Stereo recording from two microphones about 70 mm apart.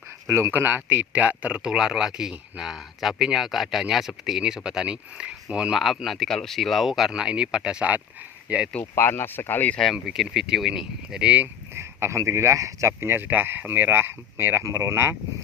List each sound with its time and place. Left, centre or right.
0.3 s speech: right
0.5 s speech: right
8.8 s speech: left
9.9 s speech: centre
11.7 s speech: right